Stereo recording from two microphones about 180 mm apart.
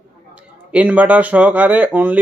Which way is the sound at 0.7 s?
5° right (ahead or behind).